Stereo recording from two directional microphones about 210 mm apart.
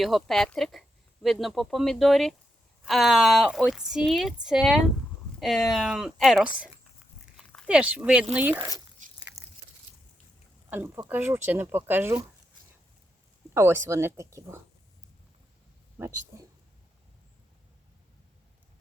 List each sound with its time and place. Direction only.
0.0 s speech: centre (ahead or behind)
9.0 s a sound: 35° right (ahead or behind)
9.4 s biting: 15° right (ahead or behind)
10.7 s speech: 10° right (ahead or behind)
13.5 s speech: 10° right (ahead or behind)
16.0 s speech: 15° right (ahead or behind)